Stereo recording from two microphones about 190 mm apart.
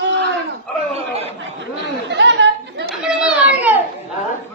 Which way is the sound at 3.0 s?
5° right (ahead or behind).